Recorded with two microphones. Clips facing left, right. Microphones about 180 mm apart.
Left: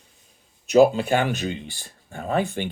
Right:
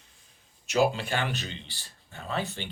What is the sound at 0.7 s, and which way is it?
Speech, 45° left (ahead or behind).